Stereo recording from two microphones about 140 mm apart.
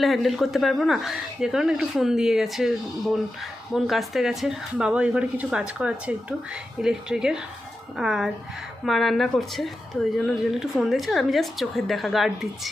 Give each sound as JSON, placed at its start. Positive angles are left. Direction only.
{"t": 0.0, "sound": "a woman's voice", "side_deg": 0}